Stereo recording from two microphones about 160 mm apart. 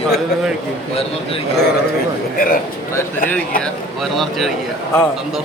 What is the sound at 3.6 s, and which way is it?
A man's voice, 5° left (ahead or behind).